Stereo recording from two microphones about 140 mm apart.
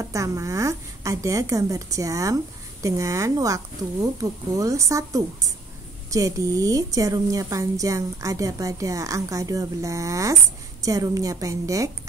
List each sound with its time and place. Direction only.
0.0 s a woman's voice: 25° right (ahead or behind)